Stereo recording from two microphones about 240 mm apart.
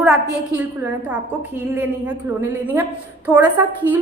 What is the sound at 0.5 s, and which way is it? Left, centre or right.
A woman's voice, centre.